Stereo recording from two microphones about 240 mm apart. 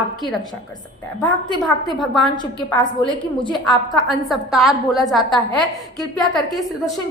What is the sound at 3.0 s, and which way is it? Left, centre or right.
Speech, centre.